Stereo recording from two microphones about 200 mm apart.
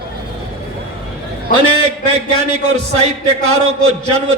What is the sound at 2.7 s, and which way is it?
A man's voice, 30° right (ahead or behind).